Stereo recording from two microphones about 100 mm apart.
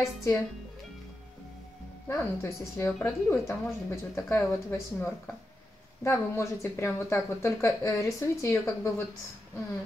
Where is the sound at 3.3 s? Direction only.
25° left (ahead or behind).